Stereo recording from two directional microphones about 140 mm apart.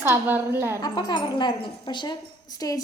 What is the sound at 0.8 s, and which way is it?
A woman's voice, 30° left (ahead or behind).